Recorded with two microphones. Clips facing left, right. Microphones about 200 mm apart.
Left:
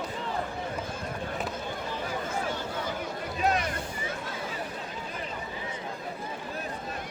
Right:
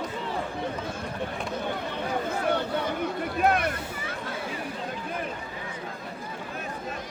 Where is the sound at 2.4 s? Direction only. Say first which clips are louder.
Right 6 dB; 60° right (ahead or behind).